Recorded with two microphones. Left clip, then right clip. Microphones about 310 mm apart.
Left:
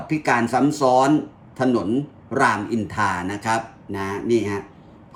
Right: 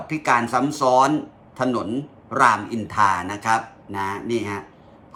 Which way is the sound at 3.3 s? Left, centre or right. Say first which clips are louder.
Right 2 dB; centre.